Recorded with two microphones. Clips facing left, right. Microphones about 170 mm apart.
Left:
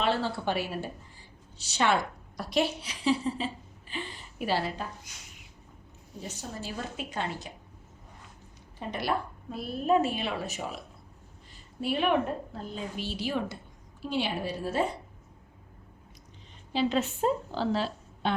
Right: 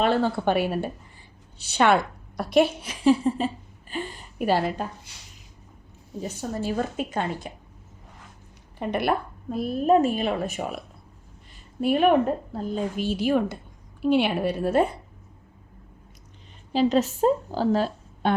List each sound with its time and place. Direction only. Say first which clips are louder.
0.0 s a woman's voice: right 6 dB; 50° right (ahead or behind)
5.1 s speech: right 1 dB; 30° right (ahead or behind)
6.6 s a woman's voice: right 11 dB; 50° right (ahead or behind)
8.8 s a woman's voice: right 6 dB; 60° right (ahead or behind)
11.8 s a woman's voice: right 7 dB; 50° right (ahead or behind)
16.7 s a woman's voice: right 6 dB; 40° right (ahead or behind)